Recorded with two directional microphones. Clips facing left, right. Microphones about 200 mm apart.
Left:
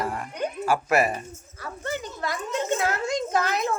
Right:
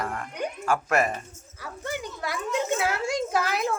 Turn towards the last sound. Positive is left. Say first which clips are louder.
# left 1 dB
turn(degrees=-5)  # may be behind; listen again after turning